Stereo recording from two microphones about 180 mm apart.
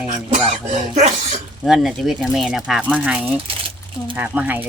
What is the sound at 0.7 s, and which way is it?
Speech, 40° right (ahead or behind).